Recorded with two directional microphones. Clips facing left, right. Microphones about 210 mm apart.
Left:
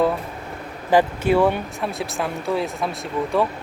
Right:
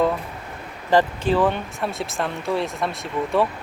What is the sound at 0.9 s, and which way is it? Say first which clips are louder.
Speech: left 1 dB; 10° left (ahead or behind).